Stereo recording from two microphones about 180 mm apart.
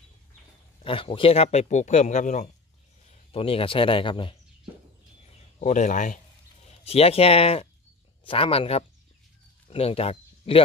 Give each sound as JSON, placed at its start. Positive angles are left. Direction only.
{"t": 0.8, "sound": "speech", "side_deg": 30}
{"t": 3.3, "sound": "speech", "side_deg": 30}
{"t": 5.6, "sound": "speech", "side_deg": 45}
{"t": 6.8, "sound": "speech", "side_deg": 35}